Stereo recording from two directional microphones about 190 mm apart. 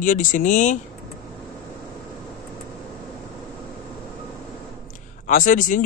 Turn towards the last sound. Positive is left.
turn(degrees=45)  # may be behind; listen again after turning